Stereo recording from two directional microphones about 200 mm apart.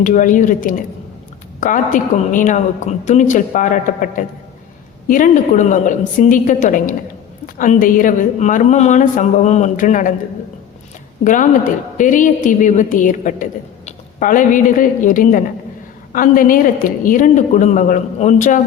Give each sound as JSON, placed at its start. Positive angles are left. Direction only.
{"t": 0.0, "sound": "a woman's voice", "side_deg": 40}
{"t": 11.2, "sound": "a woman's voice", "side_deg": 40}